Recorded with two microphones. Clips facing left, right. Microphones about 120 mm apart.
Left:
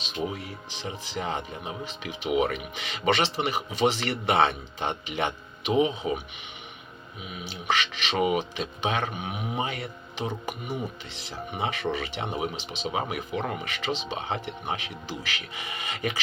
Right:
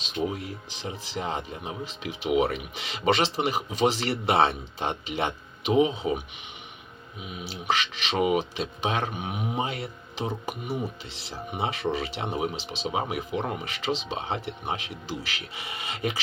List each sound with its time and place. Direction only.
0.2 s speech: 35° right (ahead or behind)
7.3 s speech: 35° right (ahead or behind)
8.1 s speech: 15° right (ahead or behind)
8.4 s speech: 35° right (ahead or behind)
13.6 s speech: 35° right (ahead or behind)